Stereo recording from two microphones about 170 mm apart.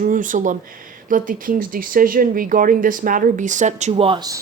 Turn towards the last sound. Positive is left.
turn(degrees=-25)  # may be behind; listen again after turning